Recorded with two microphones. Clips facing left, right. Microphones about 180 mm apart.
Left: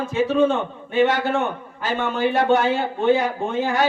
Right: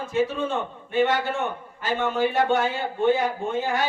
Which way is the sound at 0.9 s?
75° left (ahead or behind).